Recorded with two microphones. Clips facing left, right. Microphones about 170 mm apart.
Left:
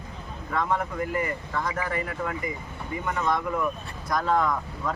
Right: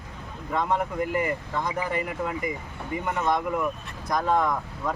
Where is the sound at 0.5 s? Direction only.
15° right (ahead or behind).